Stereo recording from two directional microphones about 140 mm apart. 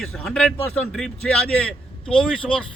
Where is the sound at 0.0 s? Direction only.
5° left (ahead or behind).